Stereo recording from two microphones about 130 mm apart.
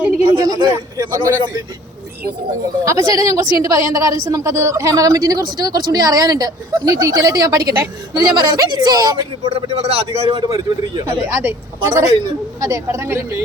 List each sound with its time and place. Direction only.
0.3 s speech: 30° right (ahead or behind)
2.8 s a woman's voice: 25° right (ahead or behind)
9.6 s a man's voice: 55° right (ahead or behind)
10.3 s a woman's voice: 30° right (ahead or behind)
11.0 s speech: 20° right (ahead or behind)